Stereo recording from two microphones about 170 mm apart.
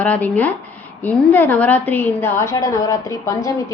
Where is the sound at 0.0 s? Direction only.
10° left (ahead or behind).